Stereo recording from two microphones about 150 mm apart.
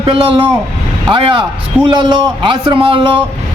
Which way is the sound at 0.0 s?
35° right (ahead or behind).